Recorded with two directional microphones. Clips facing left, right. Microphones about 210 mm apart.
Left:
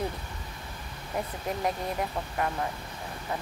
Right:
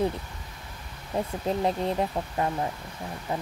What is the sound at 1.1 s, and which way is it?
Speech, 25° right (ahead or behind).